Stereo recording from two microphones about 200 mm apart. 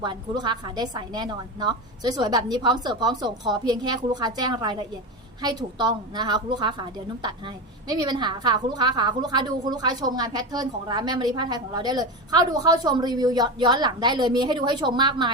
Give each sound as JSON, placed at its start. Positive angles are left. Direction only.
{"t": 0.0, "sound": "a woman's voice", "side_deg": -20}